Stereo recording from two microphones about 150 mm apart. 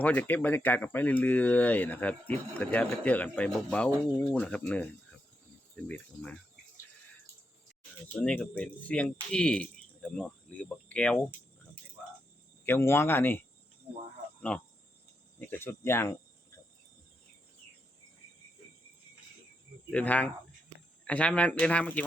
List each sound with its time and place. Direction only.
0.0 s speech: 10° left (ahead or behind)
8.0 s speech: 10° left (ahead or behind)
12.6 s speech: 15° left (ahead or behind)
14.5 s speech: 10° left (ahead or behind)
19.9 s speech: 10° left (ahead or behind)